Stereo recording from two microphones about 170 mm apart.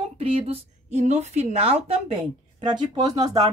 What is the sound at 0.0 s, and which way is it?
A woman's voice, 35° right (ahead or behind).